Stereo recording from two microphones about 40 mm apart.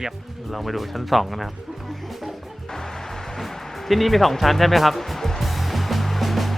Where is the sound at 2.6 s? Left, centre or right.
Centre.